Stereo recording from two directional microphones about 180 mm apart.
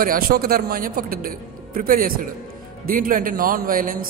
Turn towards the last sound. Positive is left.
turn(degrees=-50)  # may be behind; listen again after turning